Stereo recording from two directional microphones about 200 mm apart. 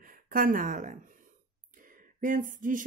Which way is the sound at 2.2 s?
40° right (ahead or behind).